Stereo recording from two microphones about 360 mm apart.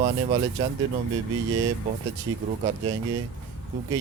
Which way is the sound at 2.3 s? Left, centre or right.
Centre.